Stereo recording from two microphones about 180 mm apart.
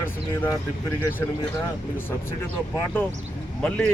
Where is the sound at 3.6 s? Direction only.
5° left (ahead or behind).